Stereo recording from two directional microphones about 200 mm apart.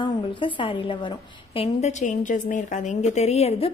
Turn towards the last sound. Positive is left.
turn(degrees=30)  # may be behind; listen again after turning